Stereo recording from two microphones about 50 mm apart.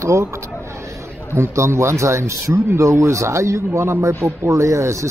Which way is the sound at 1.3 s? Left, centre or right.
Right.